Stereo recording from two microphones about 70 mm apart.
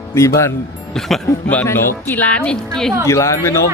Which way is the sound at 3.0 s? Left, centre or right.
Left.